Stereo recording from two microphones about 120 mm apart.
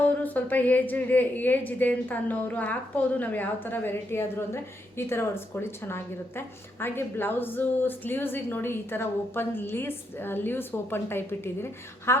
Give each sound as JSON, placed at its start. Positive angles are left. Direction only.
{"t": 0.0, "sound": "a woman's voice", "side_deg": 15}